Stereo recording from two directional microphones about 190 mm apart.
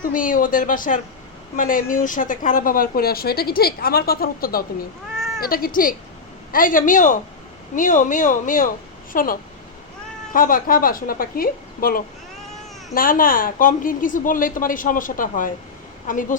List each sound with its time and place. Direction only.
0.0 s speech: 45° left (ahead or behind)
5.1 s cat: centre (ahead or behind)
5.4 s speech: 50° left (ahead or behind)